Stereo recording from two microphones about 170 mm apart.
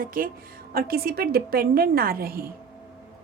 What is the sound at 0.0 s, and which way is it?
A woman's voice, 55° right (ahead or behind).